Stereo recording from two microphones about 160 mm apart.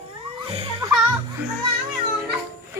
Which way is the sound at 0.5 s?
35° right (ahead or behind).